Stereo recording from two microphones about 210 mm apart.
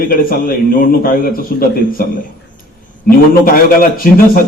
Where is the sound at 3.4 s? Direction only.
40° left (ahead or behind).